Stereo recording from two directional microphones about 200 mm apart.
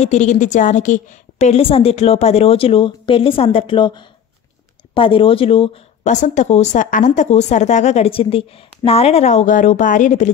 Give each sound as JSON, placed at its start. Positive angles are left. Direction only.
{"t": 0.0, "sound": "a woman's voice", "side_deg": 35}